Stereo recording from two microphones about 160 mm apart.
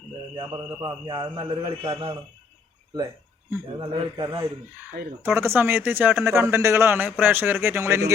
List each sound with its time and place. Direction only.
0.3 s a man's voice: 25° right (ahead or behind)
3.8 s a man's voice: 30° right (ahead or behind)
5.2 s a man's voice: 15° right (ahead or behind)